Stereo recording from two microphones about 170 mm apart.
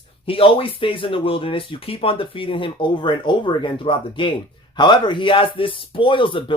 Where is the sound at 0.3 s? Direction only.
30° left (ahead or behind).